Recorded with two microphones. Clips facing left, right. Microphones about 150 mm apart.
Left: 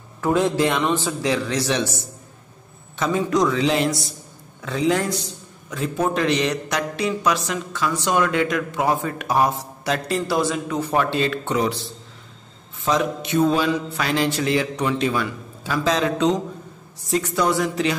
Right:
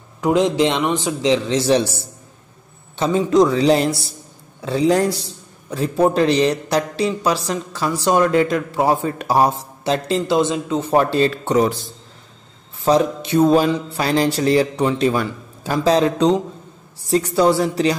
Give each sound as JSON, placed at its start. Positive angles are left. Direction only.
{"t": 0.2, "sound": "a man's voice", "side_deg": -15}
{"t": 12.8, "sound": "a man's voice", "side_deg": -35}